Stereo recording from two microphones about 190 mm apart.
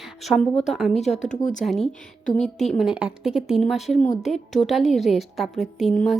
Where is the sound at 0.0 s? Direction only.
Centre (ahead or behind).